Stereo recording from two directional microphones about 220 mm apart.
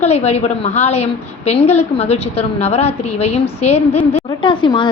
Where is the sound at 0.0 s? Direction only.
30° left (ahead or behind).